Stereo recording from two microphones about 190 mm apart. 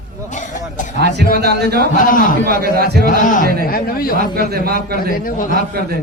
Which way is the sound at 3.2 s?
45° left (ahead or behind).